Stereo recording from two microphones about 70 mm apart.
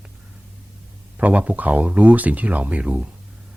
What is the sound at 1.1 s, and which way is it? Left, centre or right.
Speech, centre.